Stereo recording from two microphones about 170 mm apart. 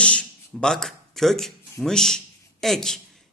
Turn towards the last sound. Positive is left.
turn(degrees=5)  # may be behind; listen again after turning